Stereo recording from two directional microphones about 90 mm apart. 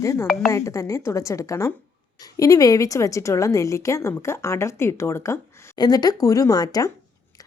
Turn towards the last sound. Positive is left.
turn(degrees=45)  # may be behind; listen again after turning